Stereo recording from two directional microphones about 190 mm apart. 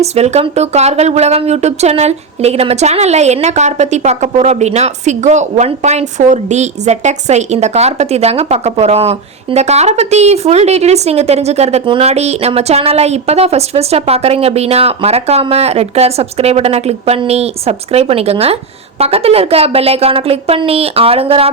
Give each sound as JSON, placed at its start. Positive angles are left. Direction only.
{"t": 0.0, "sound": "speech", "side_deg": -35}